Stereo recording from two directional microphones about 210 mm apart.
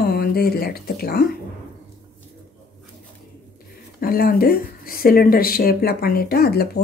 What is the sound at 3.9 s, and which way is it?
Speech, 45° left (ahead or behind).